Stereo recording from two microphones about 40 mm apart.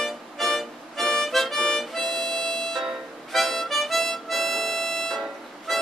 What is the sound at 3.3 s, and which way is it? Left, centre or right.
Harmonica, centre.